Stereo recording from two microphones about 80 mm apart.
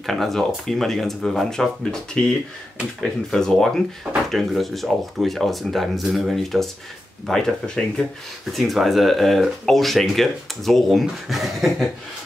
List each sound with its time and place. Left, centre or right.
0.0 s speech: centre